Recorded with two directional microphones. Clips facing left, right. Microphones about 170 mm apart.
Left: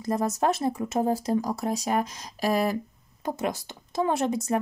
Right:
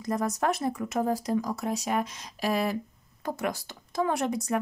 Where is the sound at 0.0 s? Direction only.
30° left (ahead or behind).